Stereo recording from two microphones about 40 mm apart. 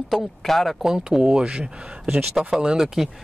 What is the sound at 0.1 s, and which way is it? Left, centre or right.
Speech, centre.